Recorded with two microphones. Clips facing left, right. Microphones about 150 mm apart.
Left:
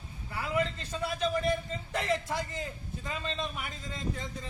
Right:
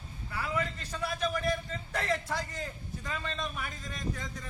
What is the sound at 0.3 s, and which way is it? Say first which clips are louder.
A man's voice: left 3 dB; 20° left (ahead or behind).